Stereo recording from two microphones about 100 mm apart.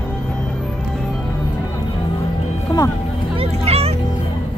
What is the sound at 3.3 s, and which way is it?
Music, 85° right.